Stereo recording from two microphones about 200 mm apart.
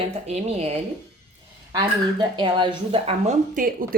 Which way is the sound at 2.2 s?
25° right (ahead or behind).